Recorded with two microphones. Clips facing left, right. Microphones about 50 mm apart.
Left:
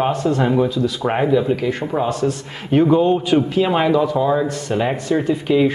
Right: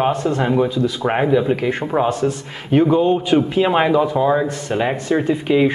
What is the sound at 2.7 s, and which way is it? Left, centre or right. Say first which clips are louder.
Speech: even; centre.